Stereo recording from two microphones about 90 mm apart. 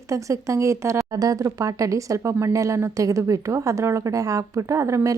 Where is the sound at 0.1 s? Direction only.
35° right (ahead or behind).